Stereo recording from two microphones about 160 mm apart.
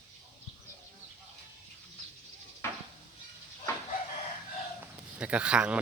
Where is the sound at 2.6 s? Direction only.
15° left (ahead or behind).